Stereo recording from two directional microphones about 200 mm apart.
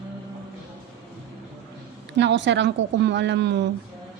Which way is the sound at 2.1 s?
60° right (ahead or behind).